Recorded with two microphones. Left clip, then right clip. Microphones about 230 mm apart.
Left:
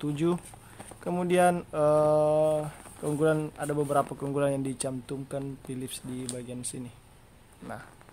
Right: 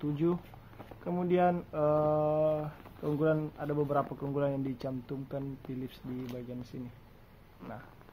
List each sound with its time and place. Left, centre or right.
0.0 s speech: left